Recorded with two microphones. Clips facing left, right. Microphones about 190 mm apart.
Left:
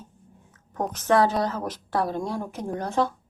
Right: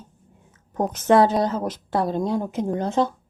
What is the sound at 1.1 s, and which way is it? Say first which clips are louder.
A woman's voice: right 4 dB; 25° right (ahead or behind).